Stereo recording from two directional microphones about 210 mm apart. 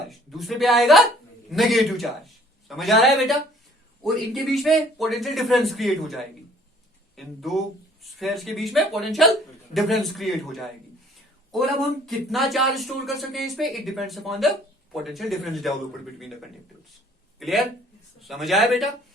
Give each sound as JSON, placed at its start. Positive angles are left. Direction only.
{"t": 0.1, "sound": "a woman's voice", "side_deg": 0}
{"t": 7.2, "sound": "speech", "side_deg": 0}
{"t": 17.4, "sound": "speech", "side_deg": 0}